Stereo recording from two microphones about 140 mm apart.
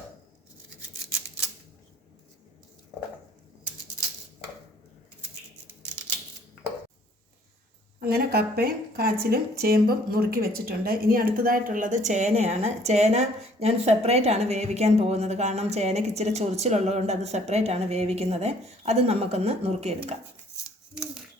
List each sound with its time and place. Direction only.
8.0 s a woman's voice: 90° right; by 20.1 s 50° right (ahead or behind)